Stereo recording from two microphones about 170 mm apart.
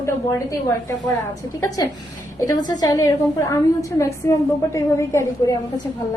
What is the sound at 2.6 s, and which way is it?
A woman's voice, 20° left (ahead or behind).